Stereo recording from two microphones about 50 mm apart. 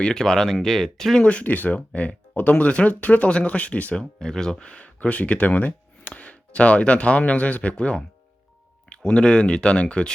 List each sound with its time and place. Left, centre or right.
0.0 s speech: centre
1.2 s speech: left
3.9 s speech: centre
4.6 s speech: left